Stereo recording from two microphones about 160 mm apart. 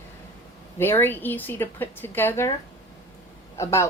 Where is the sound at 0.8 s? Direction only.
15° left (ahead or behind).